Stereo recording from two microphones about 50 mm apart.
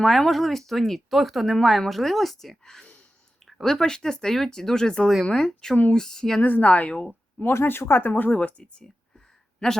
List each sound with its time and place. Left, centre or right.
0.0 s speech: centre
6.4 s speech: left
7.6 s speech: left
8.0 s speech: left
9.6 s speech: centre